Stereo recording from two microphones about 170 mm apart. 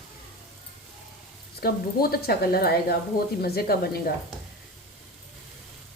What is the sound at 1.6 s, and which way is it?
A woman's voice, 65° left (ahead or behind).